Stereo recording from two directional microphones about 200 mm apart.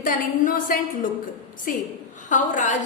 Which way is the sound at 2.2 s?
40° left (ahead or behind).